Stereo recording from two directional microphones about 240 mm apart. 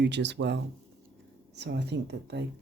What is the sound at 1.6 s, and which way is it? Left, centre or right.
Speech, right.